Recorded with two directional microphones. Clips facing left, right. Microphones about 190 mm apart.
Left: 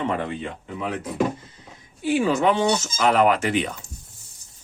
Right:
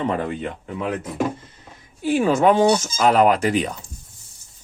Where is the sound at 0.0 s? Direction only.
40° right (ahead or behind).